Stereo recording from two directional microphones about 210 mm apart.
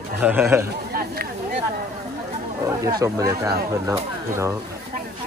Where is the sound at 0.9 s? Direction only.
45° right (ahead or behind).